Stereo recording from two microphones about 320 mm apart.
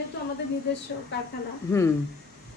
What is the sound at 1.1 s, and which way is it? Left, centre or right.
Speech, left.